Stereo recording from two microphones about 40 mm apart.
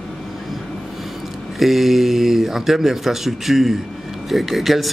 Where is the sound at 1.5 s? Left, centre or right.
Centre.